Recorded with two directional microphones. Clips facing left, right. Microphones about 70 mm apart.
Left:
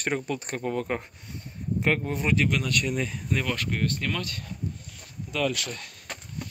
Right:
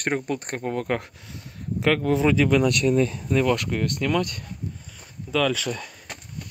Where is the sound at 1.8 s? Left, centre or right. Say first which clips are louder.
Right 5 dB; right.